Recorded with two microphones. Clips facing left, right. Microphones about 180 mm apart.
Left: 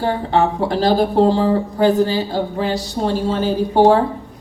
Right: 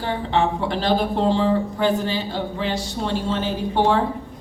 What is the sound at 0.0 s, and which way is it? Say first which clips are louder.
Speech: left 4 dB; 40° left (ahead or behind).